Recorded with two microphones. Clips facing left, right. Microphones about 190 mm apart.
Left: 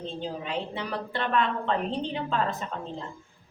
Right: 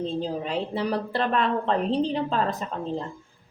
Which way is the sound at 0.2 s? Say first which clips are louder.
Right 4 dB; 40° right (ahead or behind).